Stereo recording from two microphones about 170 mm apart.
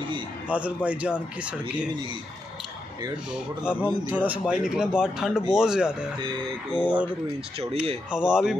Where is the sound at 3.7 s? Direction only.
5° right (ahead or behind).